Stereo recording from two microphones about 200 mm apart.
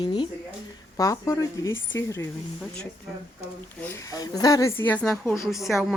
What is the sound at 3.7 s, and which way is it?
A woman's voice, 10° left (ahead or behind).